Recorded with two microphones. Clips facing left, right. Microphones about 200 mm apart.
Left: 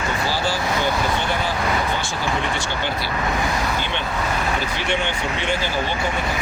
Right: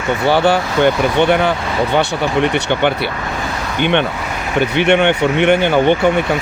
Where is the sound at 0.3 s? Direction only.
65° right (ahead or behind).